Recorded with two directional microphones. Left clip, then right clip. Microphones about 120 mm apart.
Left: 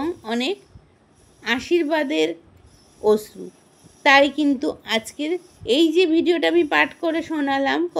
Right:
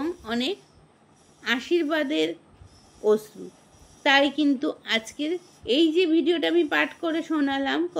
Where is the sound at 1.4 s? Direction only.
35° left (ahead or behind).